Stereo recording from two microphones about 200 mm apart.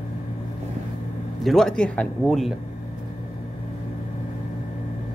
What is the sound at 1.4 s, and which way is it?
Speech, centre (ahead or behind).